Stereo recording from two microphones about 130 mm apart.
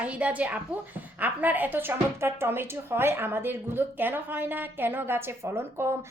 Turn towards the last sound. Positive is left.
turn(degrees=-20)  # may be behind; listen again after turning